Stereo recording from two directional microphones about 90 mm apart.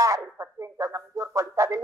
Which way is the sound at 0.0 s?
35° right (ahead or behind).